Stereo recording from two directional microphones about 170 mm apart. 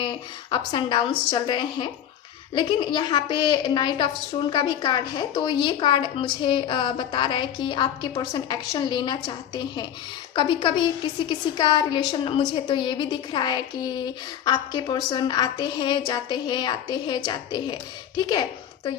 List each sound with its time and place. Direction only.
0.0 s a woman's voice: 25° left (ahead or behind)